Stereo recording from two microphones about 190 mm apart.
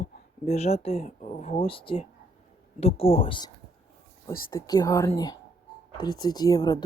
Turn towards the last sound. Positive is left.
turn(degrees=20)  # may be behind; listen again after turning